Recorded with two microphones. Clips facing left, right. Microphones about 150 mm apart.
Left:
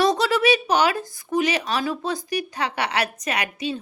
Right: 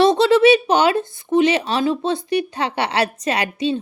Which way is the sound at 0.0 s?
25° right (ahead or behind).